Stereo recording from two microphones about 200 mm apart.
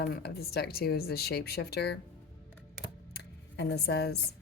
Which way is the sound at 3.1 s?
55° left (ahead or behind).